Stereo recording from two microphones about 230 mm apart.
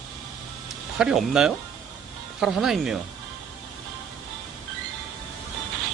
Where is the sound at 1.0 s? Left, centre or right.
Centre.